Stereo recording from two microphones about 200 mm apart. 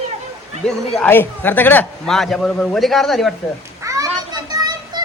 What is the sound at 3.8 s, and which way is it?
Children playing, 15° right (ahead or behind).